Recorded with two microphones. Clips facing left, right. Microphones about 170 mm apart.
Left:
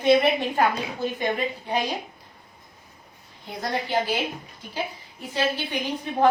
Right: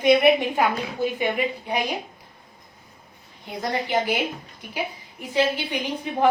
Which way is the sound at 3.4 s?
15° right (ahead or behind).